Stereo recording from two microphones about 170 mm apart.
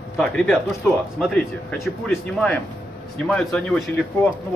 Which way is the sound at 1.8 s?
5° left (ahead or behind).